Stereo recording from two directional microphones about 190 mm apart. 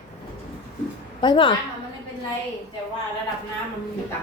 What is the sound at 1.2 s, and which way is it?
Speech, 25° left (ahead or behind).